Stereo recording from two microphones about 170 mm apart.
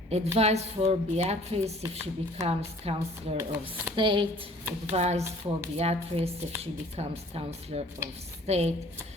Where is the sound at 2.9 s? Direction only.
35° right (ahead or behind).